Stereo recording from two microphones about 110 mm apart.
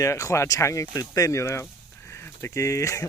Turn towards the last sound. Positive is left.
turn(degrees=25)  # may be behind; listen again after turning